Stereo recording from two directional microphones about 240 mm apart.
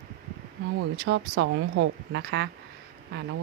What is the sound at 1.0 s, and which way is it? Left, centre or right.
A woman's voice, right.